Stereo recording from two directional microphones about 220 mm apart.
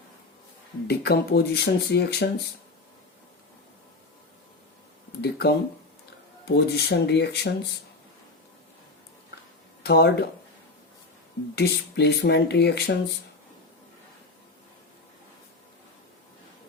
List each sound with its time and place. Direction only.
0.9 s speech: 45° left (ahead or behind)
5.2 s speech: 45° left (ahead or behind)
9.8 s speech: 45° left (ahead or behind)
11.5 s speech: 50° left (ahead or behind)